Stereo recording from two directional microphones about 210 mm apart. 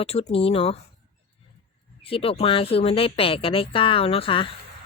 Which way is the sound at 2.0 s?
25° left (ahead or behind).